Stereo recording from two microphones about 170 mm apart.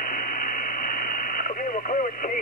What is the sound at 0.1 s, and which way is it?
Speech, 55° left (ahead or behind).